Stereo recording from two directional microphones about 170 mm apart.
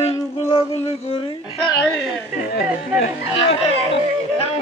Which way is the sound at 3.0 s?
35° left (ahead or behind).